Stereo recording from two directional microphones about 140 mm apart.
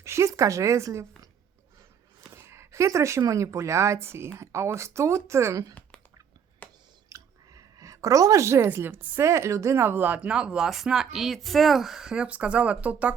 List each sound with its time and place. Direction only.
0.0 s a woman's voice: 20° right (ahead or behind)
6.6 s a sound: 10° left (ahead or behind)
7.1 s speech: 25° right (ahead or behind)